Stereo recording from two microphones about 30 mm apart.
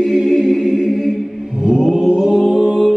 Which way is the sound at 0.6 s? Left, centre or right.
Centre.